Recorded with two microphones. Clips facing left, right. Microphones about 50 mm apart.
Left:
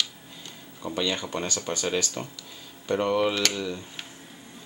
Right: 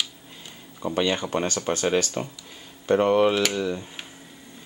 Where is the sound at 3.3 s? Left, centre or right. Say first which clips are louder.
Right 4 dB; centre.